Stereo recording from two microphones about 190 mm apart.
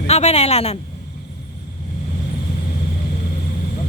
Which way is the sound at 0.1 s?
35° left (ahead or behind).